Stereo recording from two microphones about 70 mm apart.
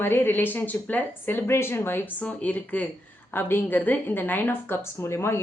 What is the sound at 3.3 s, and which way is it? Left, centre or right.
A woman's voice, left.